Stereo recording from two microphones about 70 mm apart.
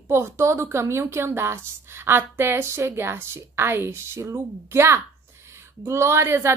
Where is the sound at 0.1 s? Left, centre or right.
Right.